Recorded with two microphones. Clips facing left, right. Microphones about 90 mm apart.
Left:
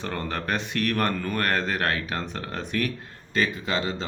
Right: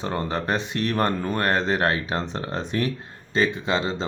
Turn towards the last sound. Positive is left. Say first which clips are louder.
# right 3 dB
turn(degrees=-25)  # may be behind; listen again after turning